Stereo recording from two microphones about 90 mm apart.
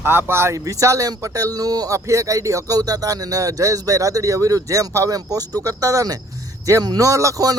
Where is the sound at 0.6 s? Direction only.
40° right (ahead or behind).